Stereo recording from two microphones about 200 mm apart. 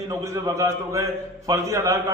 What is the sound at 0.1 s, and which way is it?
A man's voice, 15° right (ahead or behind).